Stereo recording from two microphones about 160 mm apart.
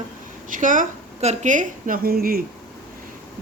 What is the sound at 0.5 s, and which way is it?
A man's voice, 55° right (ahead or behind).